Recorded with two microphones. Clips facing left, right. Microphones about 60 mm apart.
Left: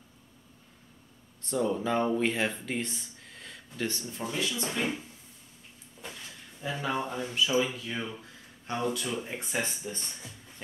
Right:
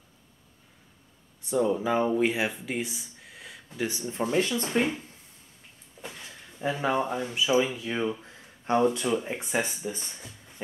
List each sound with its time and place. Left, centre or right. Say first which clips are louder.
1.4 s speech: right 4 dB; centre
4.1 s speech: right 7 dB; right
4.4 s speech: right 5 dB; right
6.1 s a sound: right 2 dB; right
7.2 s speech: right 3 dB; centre